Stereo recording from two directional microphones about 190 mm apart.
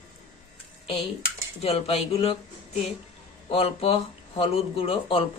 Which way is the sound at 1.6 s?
30° left (ahead or behind).